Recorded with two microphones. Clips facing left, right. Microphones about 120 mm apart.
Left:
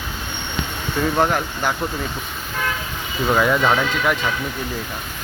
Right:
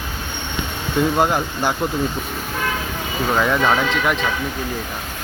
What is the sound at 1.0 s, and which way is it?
Speech, 15° right (ahead or behind).